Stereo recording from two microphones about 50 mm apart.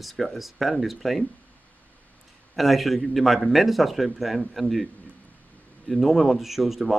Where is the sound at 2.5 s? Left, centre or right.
Centre.